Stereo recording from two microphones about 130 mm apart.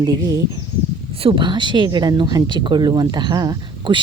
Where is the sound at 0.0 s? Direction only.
30° right (ahead or behind).